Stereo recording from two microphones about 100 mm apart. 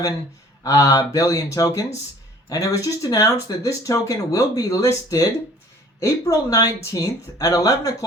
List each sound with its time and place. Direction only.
0.6 s speech: 35° left (ahead or behind)